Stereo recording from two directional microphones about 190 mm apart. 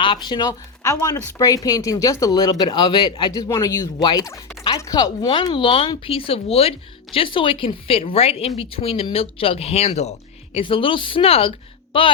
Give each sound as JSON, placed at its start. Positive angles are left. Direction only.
{"t": 0.0, "sound": "speech", "side_deg": 25}